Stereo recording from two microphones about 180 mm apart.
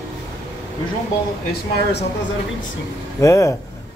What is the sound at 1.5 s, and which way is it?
Speech, 70° left (ahead or behind).